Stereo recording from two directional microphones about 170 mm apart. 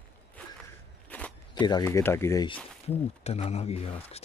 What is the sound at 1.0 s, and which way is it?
Walk, 10° left (ahead or behind).